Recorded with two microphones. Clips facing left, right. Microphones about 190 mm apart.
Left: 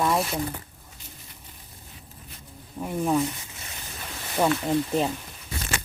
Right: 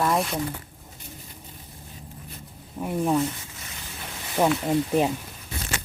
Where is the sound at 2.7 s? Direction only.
5° right (ahead or behind).